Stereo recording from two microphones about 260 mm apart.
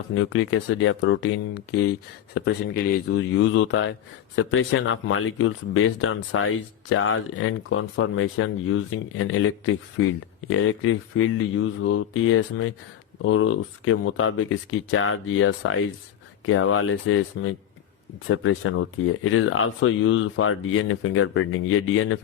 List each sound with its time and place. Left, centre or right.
0.1 s speech: left